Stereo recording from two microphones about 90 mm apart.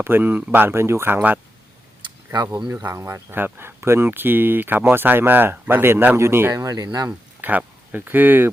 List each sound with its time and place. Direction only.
0.0 s speech: 25° right (ahead or behind)
2.0 s a sound: 50° right (ahead or behind)
2.6 s speech: 30° right (ahead or behind)
6.6 s speech: 45° right (ahead or behind)
7.1 s speech: 20° right (ahead or behind)